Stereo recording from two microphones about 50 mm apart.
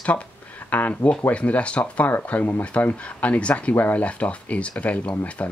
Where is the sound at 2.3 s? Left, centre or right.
Left.